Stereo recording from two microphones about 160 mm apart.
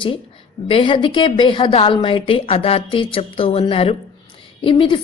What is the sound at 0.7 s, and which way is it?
A woman's voice, 30° left (ahead or behind).